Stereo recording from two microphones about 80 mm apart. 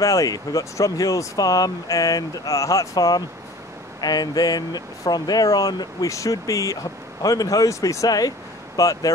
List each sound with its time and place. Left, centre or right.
0.0 s speech: left